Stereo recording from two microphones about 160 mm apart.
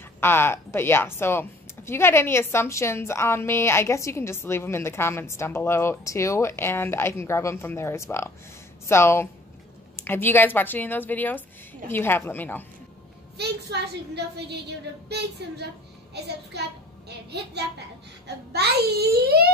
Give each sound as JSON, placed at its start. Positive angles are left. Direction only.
{"t": 0.2, "sound": "a woman's voice", "side_deg": 15}
{"t": 13.4, "sound": "a child's voice", "side_deg": -90}